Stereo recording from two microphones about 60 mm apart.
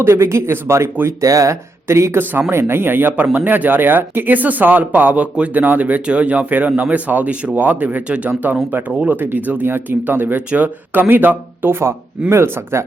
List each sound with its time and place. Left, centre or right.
0.0 s speech: right
1.2 s speech: right
2.5 s speech: right